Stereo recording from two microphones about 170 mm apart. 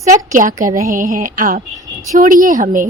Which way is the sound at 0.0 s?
45° right (ahead or behind).